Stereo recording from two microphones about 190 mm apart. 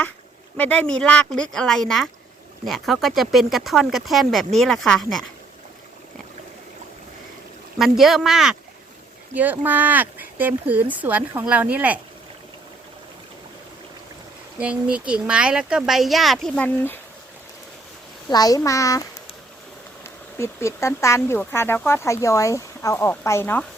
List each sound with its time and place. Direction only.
0.5 s speech: 10° left (ahead or behind)
7.8 s speech: centre (ahead or behind)
14.6 s speech: 5° right (ahead or behind); by 17.0 s 10° left (ahead or behind)
18.3 s speech: 20° left (ahead or behind)
20.4 s speech: 15° left (ahead or behind)